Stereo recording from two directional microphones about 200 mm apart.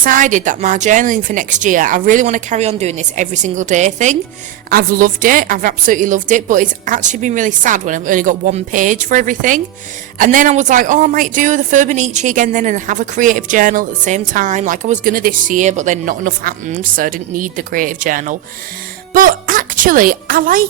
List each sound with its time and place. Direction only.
0.0 s a woman's voice: 40° right (ahead or behind)